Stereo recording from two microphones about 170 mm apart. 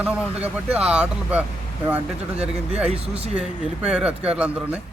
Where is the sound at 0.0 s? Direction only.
10° right (ahead or behind).